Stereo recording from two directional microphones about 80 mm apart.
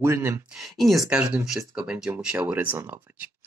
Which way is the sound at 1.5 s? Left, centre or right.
Centre.